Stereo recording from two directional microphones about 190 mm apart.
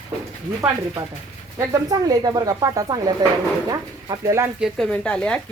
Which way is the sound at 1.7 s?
20° right (ahead or behind).